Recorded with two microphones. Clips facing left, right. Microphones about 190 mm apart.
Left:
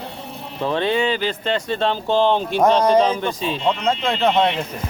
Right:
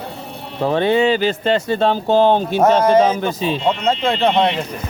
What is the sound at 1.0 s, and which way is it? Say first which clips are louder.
Speech: right 5 dB; 45° right (ahead or behind).